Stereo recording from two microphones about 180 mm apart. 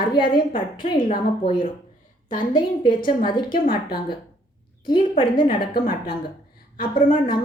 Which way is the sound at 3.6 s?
55° left (ahead or behind).